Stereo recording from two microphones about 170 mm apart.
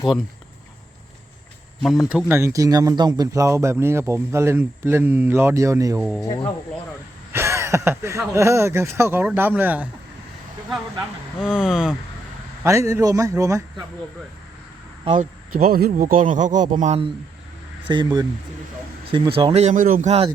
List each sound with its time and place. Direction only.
1.8 s speech: centre (ahead or behind)
2.4 s speech: 20° right (ahead or behind)
6.2 s speech: 25° left (ahead or behind)
7.3 s speech: 15° right (ahead or behind)
11.3 s speech: 5° right (ahead or behind)
12.6 s a man's voice: 20° right (ahead or behind)
15.2 s speech: 60° right (ahead or behind)
17.8 s a man's voice: 25° right (ahead or behind); by 20.1 s 50° right (ahead or behind)
20.1 s speech: 35° right (ahead or behind)